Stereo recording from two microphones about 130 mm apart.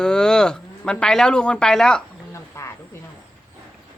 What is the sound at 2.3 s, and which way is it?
Wild animals, 20° left (ahead or behind).